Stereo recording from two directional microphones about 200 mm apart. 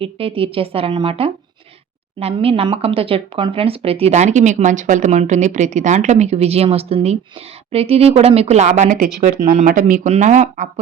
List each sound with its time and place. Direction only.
0.0 s speech: 30° right (ahead or behind)